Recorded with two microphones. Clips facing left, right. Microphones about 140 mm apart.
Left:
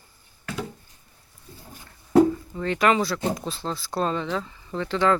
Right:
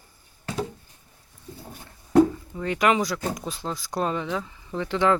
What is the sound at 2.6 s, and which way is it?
Speech, 10° right (ahead or behind).